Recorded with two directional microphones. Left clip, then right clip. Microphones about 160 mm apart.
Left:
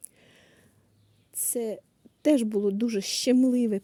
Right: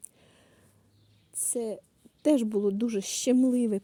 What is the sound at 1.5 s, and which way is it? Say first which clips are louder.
A woman's voice: left 2 dB; 20° left (ahead or behind).